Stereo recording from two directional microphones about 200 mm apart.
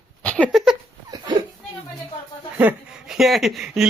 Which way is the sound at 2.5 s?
10° right (ahead or behind).